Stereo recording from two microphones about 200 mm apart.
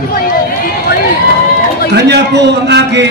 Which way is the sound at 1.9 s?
55° right (ahead or behind).